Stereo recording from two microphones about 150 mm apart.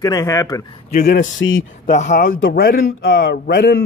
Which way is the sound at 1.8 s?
55° left (ahead or behind).